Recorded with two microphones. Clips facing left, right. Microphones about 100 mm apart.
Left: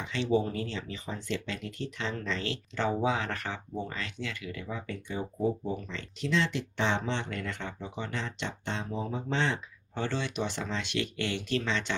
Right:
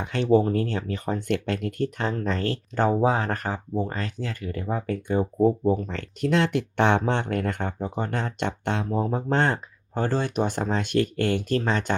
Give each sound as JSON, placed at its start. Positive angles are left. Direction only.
{"t": 0.0, "sound": "speech", "side_deg": -55}